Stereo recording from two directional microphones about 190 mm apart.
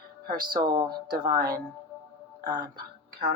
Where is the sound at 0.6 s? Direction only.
20° right (ahead or behind).